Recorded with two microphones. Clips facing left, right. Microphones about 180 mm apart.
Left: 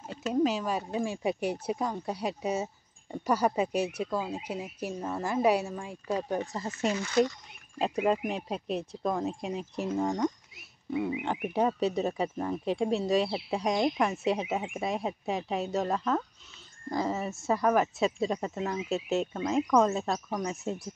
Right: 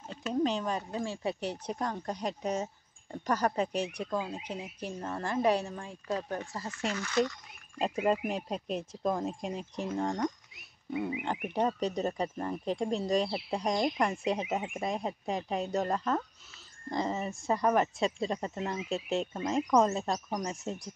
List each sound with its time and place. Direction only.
0.3 s speech: 5° left (ahead or behind); by 7.1 s 20° left (ahead or behind)
7.8 s speech: centre (ahead or behind)